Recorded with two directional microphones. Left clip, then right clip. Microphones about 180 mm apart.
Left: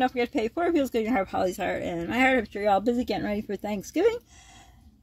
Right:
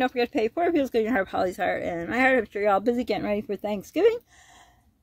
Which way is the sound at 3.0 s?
35° right (ahead or behind).